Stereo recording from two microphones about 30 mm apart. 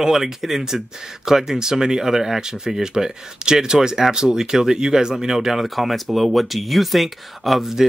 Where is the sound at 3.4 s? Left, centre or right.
Right; by 7.7 s centre.